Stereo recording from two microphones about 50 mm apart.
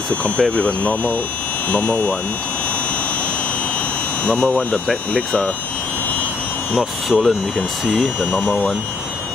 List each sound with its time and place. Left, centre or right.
0.4 s speech: left
1.7 s speech: left
4.2 s speech: left
4.6 s speech: centre
6.7 s speech: centre